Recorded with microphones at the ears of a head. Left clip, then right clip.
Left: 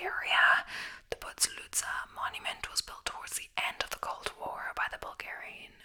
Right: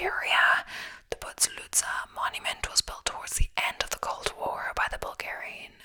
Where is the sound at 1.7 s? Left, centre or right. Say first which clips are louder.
Right 5 dB; right.